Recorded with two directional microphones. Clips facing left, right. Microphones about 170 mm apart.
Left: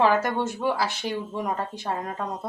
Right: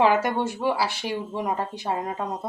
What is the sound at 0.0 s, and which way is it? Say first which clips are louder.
Speech: right 1 dB; 15° right (ahead or behind).